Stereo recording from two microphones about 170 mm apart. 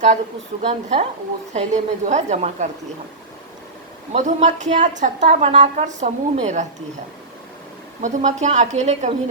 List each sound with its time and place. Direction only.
0.6 s a woman's voice: 40° right (ahead or behind)
4.1 s a woman's voice: 40° right (ahead or behind)
8.0 s a woman's voice: 45° right (ahead or behind)